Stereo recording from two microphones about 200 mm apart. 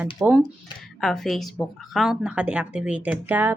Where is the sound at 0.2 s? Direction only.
10° right (ahead or behind).